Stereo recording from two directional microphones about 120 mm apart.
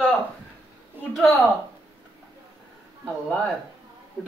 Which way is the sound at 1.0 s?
15° right (ahead or behind).